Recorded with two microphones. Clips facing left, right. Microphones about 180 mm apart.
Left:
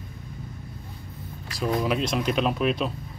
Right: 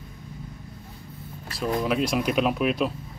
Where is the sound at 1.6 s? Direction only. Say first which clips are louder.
Even; centre (ahead or behind).